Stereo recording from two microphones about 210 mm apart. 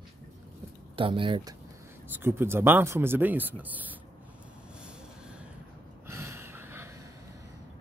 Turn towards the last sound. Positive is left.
turn(degrees=-10)  # may be behind; listen again after turning